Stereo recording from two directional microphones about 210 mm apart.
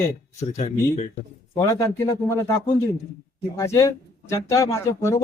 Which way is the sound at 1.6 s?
15° left (ahead or behind).